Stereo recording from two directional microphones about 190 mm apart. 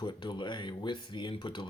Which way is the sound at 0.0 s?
25° left (ahead or behind).